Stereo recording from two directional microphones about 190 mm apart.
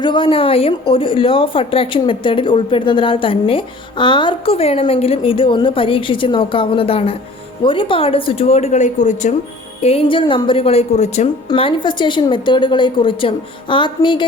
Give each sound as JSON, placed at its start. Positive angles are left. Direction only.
{"t": 0.0, "sound": "speech", "side_deg": 25}
{"t": 9.8, "sound": "a woman's voice", "side_deg": 30}
{"t": 11.4, "sound": "speech", "side_deg": 25}